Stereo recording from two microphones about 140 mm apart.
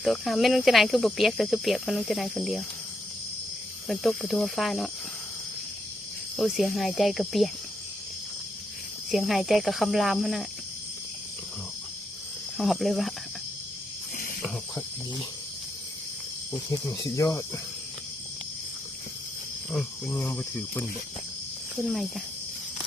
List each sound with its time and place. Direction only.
0.0 s speech: centre (ahead or behind)
3.8 s speech: centre (ahead or behind)
6.3 s speech: centre (ahead or behind)
9.0 s speech: centre (ahead or behind)
12.5 s speech: centre (ahead or behind)
17.0 s speech: 25° left (ahead or behind)
20.1 s speech: 20° left (ahead or behind)
21.8 s speech: centre (ahead or behind)